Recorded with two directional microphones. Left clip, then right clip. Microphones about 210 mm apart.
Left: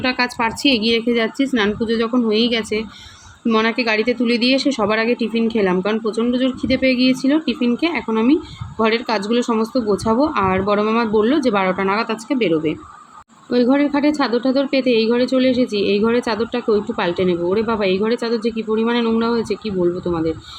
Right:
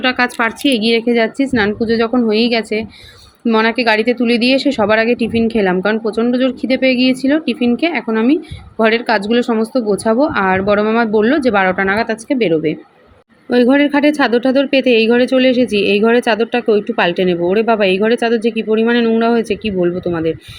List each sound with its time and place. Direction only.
0.0 s a woman's voice: 15° right (ahead or behind)